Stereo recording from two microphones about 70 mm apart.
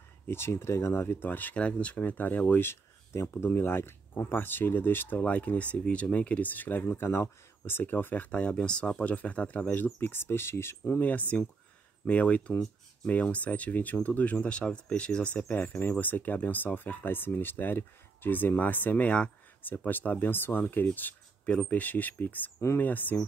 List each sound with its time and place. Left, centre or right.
0.3 s speech: left
5.2 s speech: centre
9.9 s speech: left; by 19.3 s centre
19.9 s speech: left